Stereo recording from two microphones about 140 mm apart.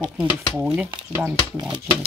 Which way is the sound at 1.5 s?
35° right (ahead or behind).